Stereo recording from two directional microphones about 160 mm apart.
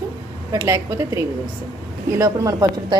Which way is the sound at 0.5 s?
20° right (ahead or behind).